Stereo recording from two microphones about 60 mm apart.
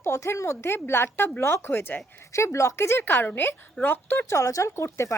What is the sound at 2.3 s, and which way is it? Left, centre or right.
Speech, left.